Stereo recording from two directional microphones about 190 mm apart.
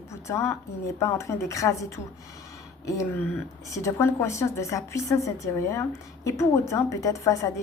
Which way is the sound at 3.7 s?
15° left (ahead or behind).